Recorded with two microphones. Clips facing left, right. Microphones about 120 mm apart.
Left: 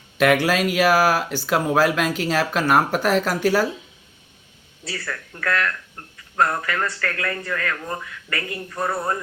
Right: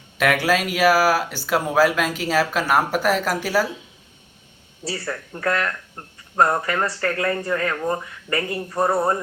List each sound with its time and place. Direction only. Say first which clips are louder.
0.2 s speech: left 2 dB; centre (ahead or behind)
4.8 s speech: right 3 dB; 35° right (ahead or behind)